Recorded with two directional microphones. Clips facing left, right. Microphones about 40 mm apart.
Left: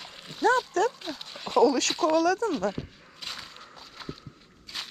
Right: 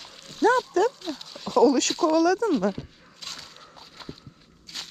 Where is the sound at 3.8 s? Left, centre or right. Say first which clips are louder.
Left 1 dB; centre.